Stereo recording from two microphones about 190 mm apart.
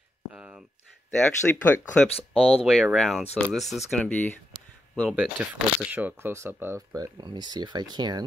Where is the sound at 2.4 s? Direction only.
5° right (ahead or behind).